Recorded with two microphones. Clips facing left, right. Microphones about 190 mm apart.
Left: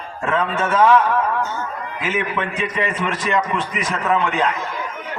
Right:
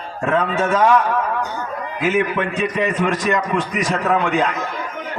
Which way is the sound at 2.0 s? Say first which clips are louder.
Right 5 dB; 45° right (ahead or behind).